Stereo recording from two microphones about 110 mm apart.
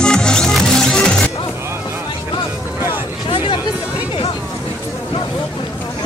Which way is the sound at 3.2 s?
55° left (ahead or behind).